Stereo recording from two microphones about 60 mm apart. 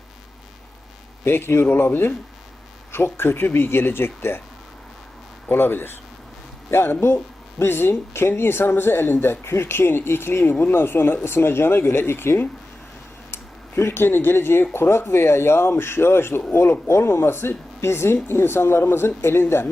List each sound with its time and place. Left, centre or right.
1.2 s speech: left
5.5 s speech: left